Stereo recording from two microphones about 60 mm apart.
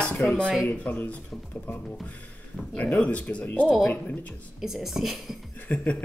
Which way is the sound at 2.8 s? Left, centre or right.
Left.